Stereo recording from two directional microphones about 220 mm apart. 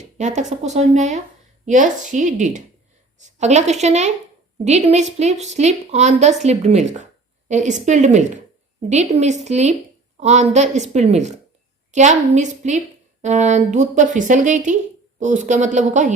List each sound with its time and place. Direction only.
0.0 s a woman's voice: 30° right (ahead or behind)